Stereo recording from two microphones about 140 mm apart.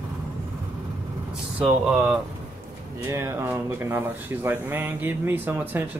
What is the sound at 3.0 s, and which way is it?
Speech, 20° right (ahead or behind).